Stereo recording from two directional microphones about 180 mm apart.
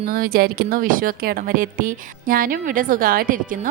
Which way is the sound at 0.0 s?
55° right (ahead or behind).